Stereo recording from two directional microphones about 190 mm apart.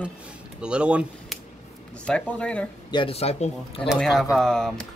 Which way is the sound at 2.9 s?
30° left (ahead or behind).